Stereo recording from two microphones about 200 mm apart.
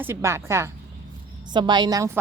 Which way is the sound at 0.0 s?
10° right (ahead or behind).